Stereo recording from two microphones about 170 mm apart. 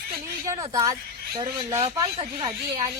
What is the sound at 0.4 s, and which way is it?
A woman's voice, 20° right (ahead or behind).